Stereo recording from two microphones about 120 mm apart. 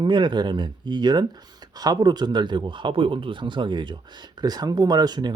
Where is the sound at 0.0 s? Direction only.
40° right (ahead or behind).